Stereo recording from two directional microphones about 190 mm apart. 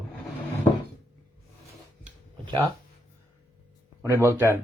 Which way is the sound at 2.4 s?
25° right (ahead or behind).